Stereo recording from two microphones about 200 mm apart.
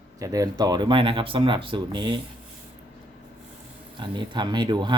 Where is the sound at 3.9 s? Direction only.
25° right (ahead or behind).